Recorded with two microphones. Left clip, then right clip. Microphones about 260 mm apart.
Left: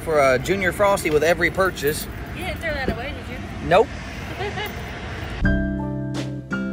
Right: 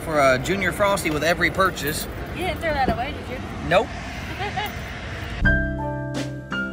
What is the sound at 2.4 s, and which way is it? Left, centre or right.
Vehicle, centre.